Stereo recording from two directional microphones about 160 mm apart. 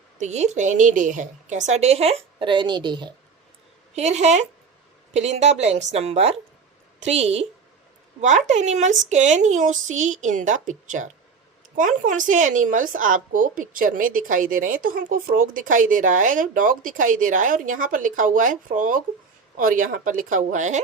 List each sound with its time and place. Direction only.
0.2 s a woman's voice: 45° right (ahead or behind); by 3.1 s 30° right (ahead or behind)
3.9 s a woman's voice: 45° right (ahead or behind)